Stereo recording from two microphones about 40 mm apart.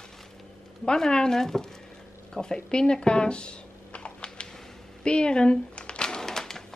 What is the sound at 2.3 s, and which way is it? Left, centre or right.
Computer keyboard, centre.